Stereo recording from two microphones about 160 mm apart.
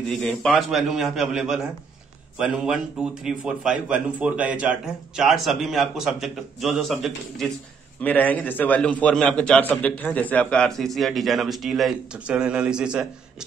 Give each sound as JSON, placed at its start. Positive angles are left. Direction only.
{"t": 0.1, "sound": "a man's voice", "side_deg": 0}